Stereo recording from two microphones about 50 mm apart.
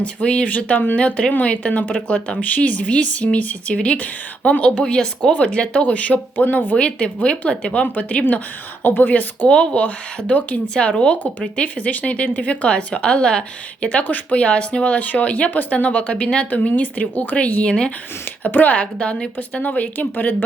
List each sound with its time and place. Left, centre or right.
0.0 s speech: left
0.9 s speech: left
6.3 s speech: left
6.7 s speech: left
9.5 s speech: left
14.0 s speech: left
18.4 s speech: left
18.8 s speech: left
19.6 s speech: left